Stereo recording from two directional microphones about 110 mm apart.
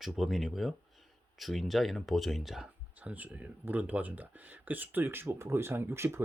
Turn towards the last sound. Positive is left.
turn(degrees=-25)  # may be behind; listen again after turning